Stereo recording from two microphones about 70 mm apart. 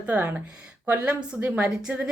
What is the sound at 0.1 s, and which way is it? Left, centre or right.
A woman's voice, right.